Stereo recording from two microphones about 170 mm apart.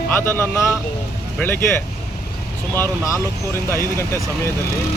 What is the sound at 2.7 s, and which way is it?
Speech, 15° left (ahead or behind).